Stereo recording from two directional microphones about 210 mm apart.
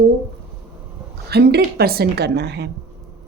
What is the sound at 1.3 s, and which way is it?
Speech, 50° right (ahead or behind).